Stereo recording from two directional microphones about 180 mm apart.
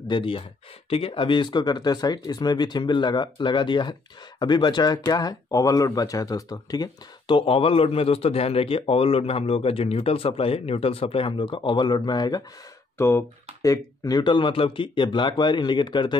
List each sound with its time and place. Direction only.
0.1 s speech: 30° left (ahead or behind)